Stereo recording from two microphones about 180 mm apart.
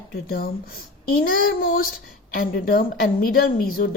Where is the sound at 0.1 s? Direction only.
60° left (ahead or behind).